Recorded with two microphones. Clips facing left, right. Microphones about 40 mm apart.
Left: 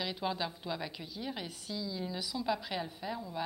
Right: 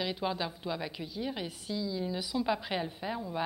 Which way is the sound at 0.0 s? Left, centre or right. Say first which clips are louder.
Right 2 dB; centre.